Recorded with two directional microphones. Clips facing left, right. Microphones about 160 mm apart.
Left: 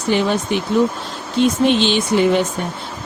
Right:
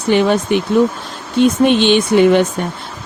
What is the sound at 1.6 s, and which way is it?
Speech, 60° right (ahead or behind).